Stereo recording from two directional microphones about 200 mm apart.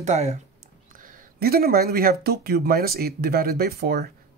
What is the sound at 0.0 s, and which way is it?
Speech, 35° right (ahead or behind).